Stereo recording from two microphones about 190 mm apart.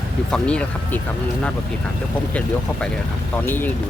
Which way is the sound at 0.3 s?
5° left (ahead or behind).